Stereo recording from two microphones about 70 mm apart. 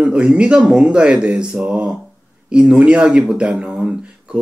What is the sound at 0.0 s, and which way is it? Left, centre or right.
Speech, centre.